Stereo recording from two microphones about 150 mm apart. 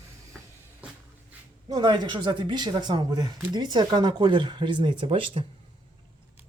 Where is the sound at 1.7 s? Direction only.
30° right (ahead or behind).